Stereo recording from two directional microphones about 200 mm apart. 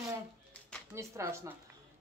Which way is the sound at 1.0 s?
15° right (ahead or behind).